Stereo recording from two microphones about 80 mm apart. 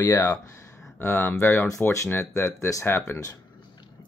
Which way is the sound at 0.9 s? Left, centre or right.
Left.